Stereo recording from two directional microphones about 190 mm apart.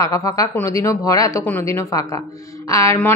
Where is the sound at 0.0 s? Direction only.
15° left (ahead or behind).